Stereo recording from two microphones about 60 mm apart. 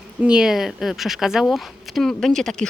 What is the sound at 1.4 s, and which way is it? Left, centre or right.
Speech, centre.